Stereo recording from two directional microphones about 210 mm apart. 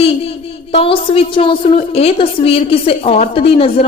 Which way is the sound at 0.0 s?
25° left (ahead or behind).